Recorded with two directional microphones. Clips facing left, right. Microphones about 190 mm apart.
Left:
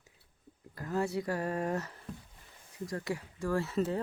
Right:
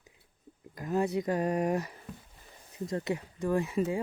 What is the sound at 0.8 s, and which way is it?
Speech, 20° right (ahead or behind).